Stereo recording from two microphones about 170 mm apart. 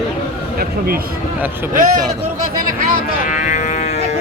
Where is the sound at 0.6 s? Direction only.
60° right (ahead or behind).